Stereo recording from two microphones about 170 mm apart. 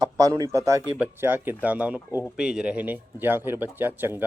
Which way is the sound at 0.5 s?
20° right (ahead or behind).